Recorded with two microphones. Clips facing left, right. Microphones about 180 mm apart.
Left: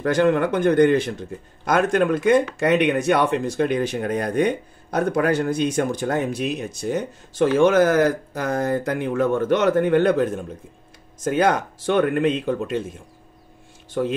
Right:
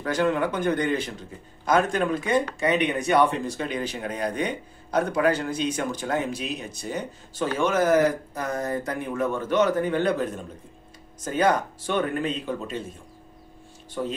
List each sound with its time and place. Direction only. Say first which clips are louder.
0.0 s a man's voice: left 5 dB; 60° left (ahead or behind)
11.1 s speech: left 3 dB; 80° left; by 12.8 s 65° left (ahead or behind)